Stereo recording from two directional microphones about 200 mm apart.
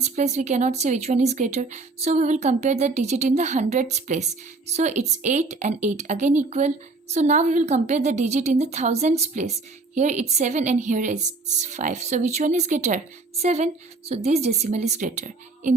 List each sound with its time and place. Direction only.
0.0 s speech: 35° right (ahead or behind)